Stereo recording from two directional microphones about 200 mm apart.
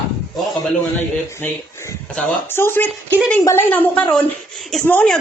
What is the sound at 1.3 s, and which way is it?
Speech, 10° left (ahead or behind).